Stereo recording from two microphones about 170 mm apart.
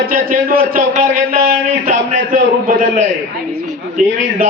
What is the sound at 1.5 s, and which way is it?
A man's voice, 50° right (ahead or behind).